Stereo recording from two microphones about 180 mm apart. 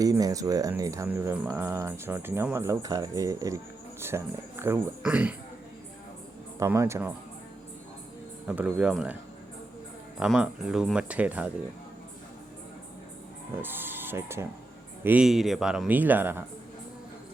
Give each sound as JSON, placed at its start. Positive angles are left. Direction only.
{"t": 0.0, "sound": "speech", "side_deg": -20}
{"t": 6.6, "sound": "speech", "side_deg": -15}
{"t": 8.4, "sound": "speech", "side_deg": -5}
{"t": 10.2, "sound": "speech", "side_deg": -5}
{"t": 13.6, "sound": "speech", "side_deg": -10}